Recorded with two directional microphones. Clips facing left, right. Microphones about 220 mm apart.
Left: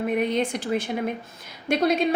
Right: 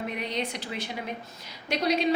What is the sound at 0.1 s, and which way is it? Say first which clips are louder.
A woman's voice: left 9 dB; 50° left (ahead or behind).